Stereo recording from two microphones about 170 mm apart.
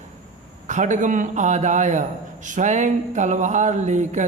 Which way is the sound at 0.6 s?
45° right (ahead or behind).